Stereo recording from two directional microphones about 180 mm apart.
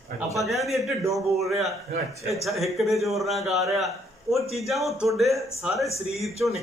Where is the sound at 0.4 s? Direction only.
Centre (ahead or behind).